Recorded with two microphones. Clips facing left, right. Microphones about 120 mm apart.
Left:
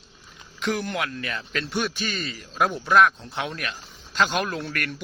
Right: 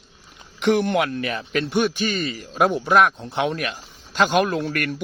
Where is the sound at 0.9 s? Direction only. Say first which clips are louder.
Right 7 dB; 25° right (ahead or behind).